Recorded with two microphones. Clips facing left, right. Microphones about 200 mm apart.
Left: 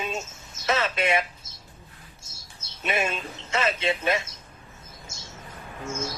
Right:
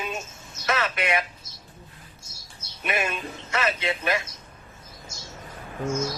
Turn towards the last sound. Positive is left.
turn(degrees=25)  # may be behind; listen again after turning